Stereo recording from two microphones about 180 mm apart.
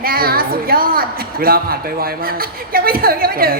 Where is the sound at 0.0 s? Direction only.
55° right (ahead or behind).